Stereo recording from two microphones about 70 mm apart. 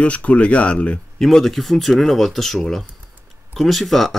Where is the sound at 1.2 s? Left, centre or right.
Centre.